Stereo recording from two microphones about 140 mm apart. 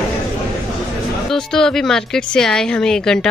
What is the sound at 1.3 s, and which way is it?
Speech, 5° left (ahead or behind).